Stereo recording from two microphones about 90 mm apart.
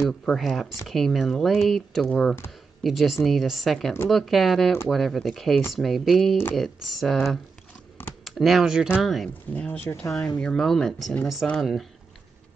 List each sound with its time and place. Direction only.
0.0 s speech: 5° left (ahead or behind)
8.2 s speech: centre (ahead or behind)
9.5 s speech: 20° left (ahead or behind); by 11.6 s centre (ahead or behind)